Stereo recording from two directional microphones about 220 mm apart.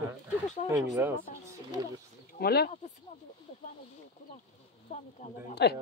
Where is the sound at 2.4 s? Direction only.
45° left (ahead or behind).